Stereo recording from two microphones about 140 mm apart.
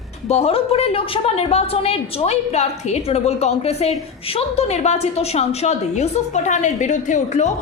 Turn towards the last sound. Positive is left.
turn(degrees=55)  # may be behind; listen again after turning